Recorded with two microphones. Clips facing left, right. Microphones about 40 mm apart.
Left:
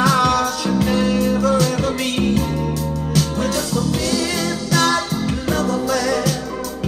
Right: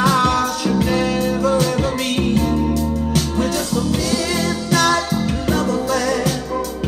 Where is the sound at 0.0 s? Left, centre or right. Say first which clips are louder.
Even; centre.